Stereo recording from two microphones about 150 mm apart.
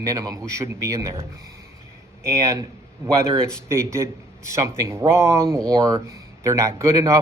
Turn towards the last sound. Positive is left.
turn(degrees=-20)  # may be behind; listen again after turning